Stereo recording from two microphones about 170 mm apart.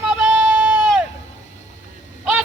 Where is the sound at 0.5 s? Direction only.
5° right (ahead or behind).